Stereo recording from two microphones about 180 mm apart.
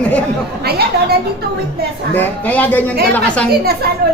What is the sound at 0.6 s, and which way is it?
Speech, 60° right (ahead or behind).